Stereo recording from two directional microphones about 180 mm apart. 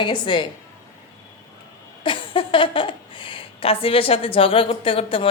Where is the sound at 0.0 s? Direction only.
25° left (ahead or behind).